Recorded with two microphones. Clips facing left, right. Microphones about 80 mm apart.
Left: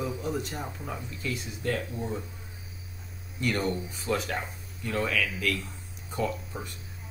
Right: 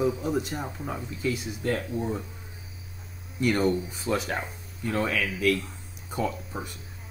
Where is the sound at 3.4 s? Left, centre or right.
Centre.